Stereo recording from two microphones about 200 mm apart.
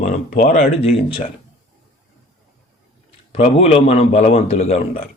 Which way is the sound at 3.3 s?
30° left (ahead or behind).